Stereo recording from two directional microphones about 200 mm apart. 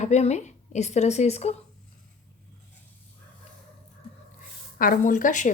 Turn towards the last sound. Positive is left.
turn(degrees=40)  # may be behind; listen again after turning